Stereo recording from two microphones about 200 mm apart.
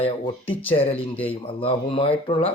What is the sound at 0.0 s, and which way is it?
Speech, 30° left (ahead or behind).